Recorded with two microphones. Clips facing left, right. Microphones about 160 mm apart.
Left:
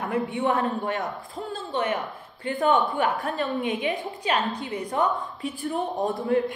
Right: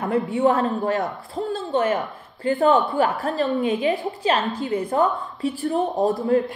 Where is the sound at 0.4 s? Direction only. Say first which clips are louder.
Right 6 dB; 40° right (ahead or behind).